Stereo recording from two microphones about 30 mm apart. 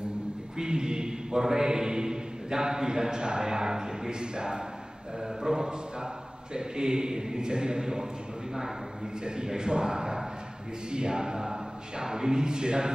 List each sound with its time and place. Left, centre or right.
0.6 s mantra: right
5.2 s a man's voice: centre
9.2 s speech: right